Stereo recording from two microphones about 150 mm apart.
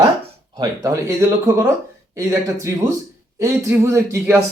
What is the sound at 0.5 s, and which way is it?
Speech, 25° right (ahead or behind).